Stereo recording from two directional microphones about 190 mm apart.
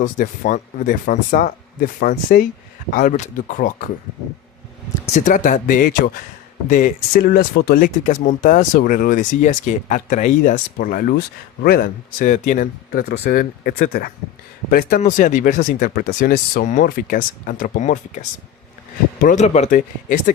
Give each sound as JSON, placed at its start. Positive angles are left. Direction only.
{"t": 0.0, "sound": "speech", "side_deg": 40}
{"t": 5.1, "sound": "speech", "side_deg": 45}